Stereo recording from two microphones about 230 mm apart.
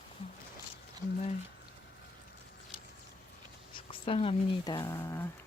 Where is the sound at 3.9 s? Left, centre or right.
Left.